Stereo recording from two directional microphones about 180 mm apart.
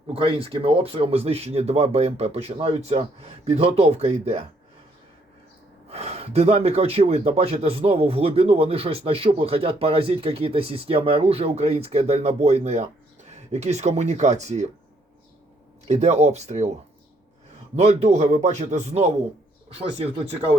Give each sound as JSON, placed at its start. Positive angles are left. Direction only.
{"t": 0.1, "sound": "speech", "side_deg": -30}
{"t": 5.9, "sound": "speech", "side_deg": -35}
{"t": 15.9, "sound": "speech", "side_deg": -40}
{"t": 17.7, "sound": "speech", "side_deg": -35}